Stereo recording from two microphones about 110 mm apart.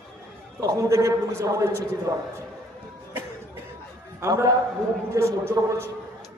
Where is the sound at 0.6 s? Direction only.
30° right (ahead or behind).